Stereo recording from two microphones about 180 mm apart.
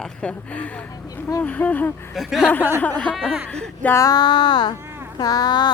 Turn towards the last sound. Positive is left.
turn(degrees=25)  # may be behind; listen again after turning